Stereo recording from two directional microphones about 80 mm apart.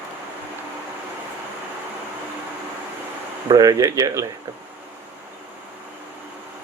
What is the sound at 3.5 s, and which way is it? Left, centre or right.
Speech, right.